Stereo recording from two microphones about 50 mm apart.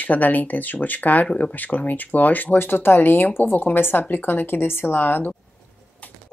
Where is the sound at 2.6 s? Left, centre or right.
Left.